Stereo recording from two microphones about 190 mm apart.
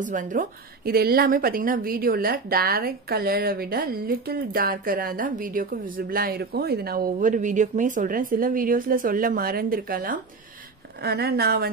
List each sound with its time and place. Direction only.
0.0 s a woman's voice: 45° right (ahead or behind)